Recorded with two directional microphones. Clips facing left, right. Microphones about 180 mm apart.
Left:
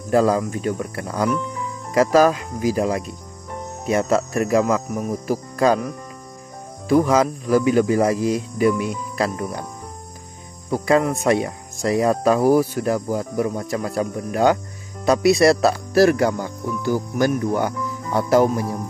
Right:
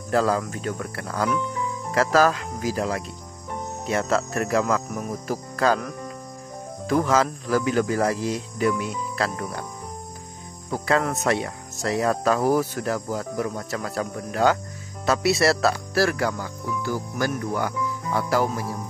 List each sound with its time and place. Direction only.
0.1 s speech: 15° left (ahead or behind)
6.9 s speech: 10° left (ahead or behind)
10.7 s speech: 15° left (ahead or behind)